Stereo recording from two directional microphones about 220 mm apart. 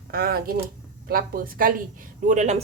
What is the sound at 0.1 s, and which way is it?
A woman's voice, 40° right (ahead or behind).